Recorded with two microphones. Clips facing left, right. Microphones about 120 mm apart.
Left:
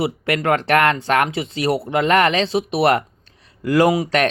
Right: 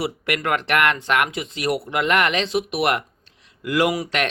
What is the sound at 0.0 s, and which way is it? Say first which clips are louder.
Speech: left 4 dB; 30° left (ahead or behind).